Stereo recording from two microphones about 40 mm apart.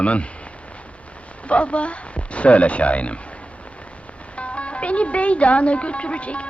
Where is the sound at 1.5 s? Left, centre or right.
Left.